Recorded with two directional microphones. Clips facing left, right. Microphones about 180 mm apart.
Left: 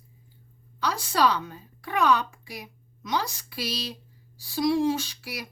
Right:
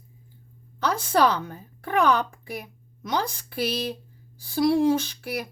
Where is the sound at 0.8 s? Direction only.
55° right (ahead or behind).